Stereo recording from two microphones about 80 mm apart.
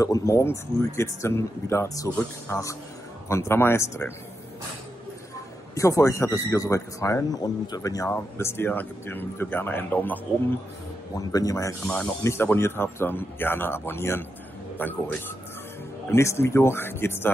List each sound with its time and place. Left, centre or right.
0.0 s speech: left
5.8 s speech: left
8.4 s speech: left
11.1 s speech: left
11.8 s speech: centre
12.2 s speech: left
16.1 s speech: left